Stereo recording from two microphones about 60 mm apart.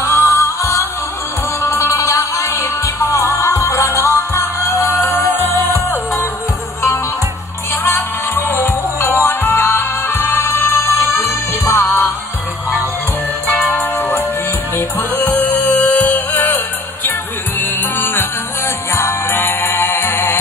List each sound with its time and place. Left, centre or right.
0.0 s music: left
1.9 s music: left
5.4 s music: left
8.4 s music: left
9.2 s music: left
13.5 s music: left